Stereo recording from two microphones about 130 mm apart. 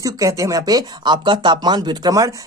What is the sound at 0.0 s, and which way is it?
Speech, 25° right (ahead or behind).